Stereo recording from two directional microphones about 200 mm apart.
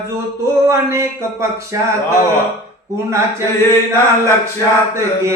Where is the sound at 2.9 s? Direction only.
15° right (ahead or behind).